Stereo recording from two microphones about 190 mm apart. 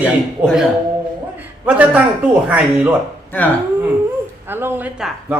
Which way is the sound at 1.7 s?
10° right (ahead or behind).